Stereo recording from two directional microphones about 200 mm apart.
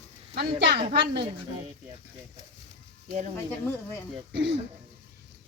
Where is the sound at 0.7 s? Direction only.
35° right (ahead or behind).